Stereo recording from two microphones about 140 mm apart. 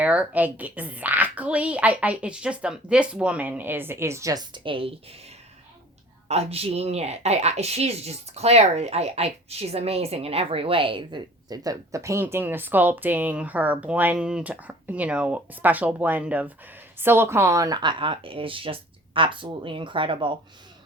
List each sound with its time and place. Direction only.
0.0 s a woman's voice: 10° right (ahead or behind); by 4.9 s 40° right (ahead or behind)
6.2 s speech: 45° right (ahead or behind)